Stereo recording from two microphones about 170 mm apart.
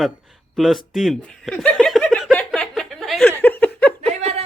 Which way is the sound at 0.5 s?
Centre (ahead or behind).